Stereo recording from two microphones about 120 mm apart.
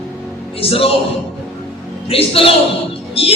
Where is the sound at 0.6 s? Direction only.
50° left (ahead or behind).